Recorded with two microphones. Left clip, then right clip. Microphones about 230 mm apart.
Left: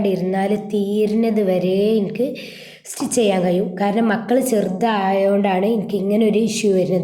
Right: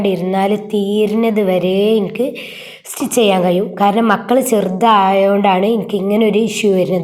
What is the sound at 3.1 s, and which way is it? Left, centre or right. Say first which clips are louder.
A woman's voice: right 5 dB; centre.